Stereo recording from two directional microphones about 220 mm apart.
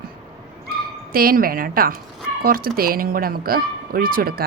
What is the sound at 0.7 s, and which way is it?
Speech, 40° right (ahead or behind).